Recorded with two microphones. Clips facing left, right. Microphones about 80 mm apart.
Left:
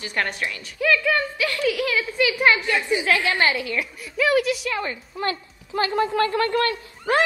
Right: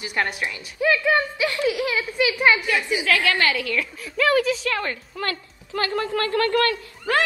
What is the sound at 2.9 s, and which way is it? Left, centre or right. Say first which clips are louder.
A woman's voice: even; left.